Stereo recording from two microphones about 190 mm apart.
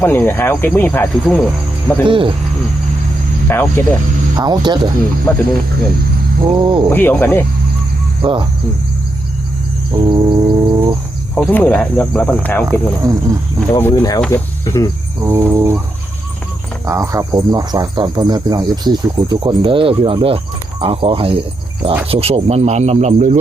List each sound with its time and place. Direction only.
0.0 s speech: 10° left (ahead or behind)
2.0 s speech: 25° right (ahead or behind)
3.5 s speech: 10° left (ahead or behind)
4.4 s speech: 20° right (ahead or behind)
5.3 s speech: 10° left (ahead or behind)
6.4 s speech: 25° right (ahead or behind)
6.9 s speech: 10° left (ahead or behind)
8.2 s speech: 25° right (ahead or behind)
9.9 s a sound: 25° right (ahead or behind)
11.3 s speech: 10° left (ahead or behind)
12.6 s cricket: 20° right (ahead or behind)
13.7 s speech: 15° left (ahead or behind)
15.2 s cricket: 10° right (ahead or behind)
16.8 s speech: 15° right (ahead or behind); by 23.4 s 35° right (ahead or behind)